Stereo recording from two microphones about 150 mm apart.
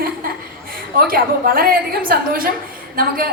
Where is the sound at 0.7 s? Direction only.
80° right.